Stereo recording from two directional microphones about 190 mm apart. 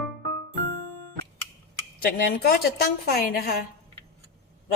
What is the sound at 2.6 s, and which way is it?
A woman's voice, 55° left (ahead or behind).